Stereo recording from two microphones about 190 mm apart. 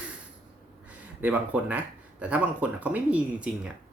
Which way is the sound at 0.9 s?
10° right (ahead or behind).